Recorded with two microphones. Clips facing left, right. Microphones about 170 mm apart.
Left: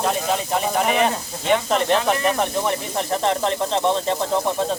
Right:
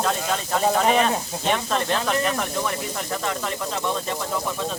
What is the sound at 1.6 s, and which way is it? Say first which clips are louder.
Speech: left 5 dB; 20° left (ahead or behind).